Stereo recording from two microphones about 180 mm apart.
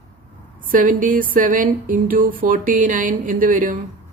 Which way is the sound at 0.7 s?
50° right (ahead or behind).